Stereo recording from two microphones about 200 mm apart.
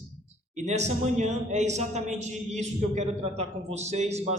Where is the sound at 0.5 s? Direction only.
35° right (ahead or behind).